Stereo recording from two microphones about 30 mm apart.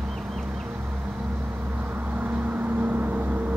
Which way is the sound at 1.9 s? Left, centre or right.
Right.